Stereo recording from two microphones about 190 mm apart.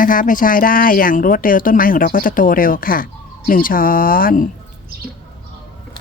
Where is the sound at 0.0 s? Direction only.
45° left (ahead or behind).